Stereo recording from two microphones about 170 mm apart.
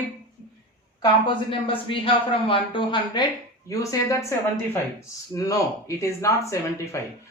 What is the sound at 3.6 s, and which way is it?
Speech, 15° left (ahead or behind).